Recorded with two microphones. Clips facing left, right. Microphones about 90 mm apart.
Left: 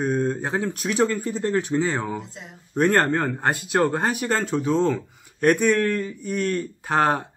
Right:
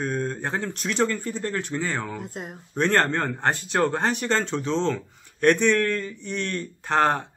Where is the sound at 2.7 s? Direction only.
10° left (ahead or behind).